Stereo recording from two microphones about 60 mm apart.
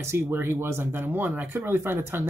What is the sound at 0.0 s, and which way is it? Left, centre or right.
Speech, right.